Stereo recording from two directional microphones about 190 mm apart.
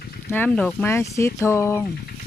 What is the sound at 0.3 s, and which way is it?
Speech, 10° left (ahead or behind).